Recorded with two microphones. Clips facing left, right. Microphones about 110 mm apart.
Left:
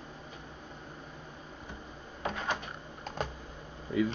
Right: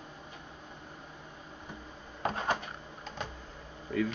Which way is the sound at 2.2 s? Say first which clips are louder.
Right 3 dB; 40° right (ahead or behind).